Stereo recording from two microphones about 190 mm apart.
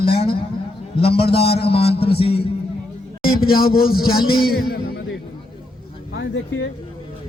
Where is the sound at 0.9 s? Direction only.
30° left (ahead or behind).